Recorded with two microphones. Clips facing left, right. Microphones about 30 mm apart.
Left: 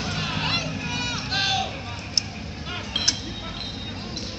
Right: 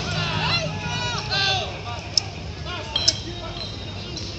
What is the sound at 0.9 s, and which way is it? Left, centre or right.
Run, right.